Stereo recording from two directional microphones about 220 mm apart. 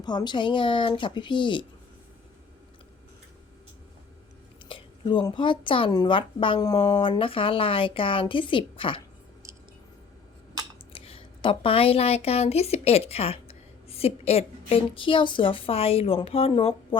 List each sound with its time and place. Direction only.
0.0 s a woman's voice: 20° left (ahead or behind)
4.7 s a woman's voice: 20° left (ahead or behind)
10.9 s speech: 25° left (ahead or behind)